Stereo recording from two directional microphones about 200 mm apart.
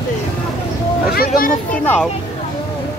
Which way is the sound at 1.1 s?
45° left (ahead or behind).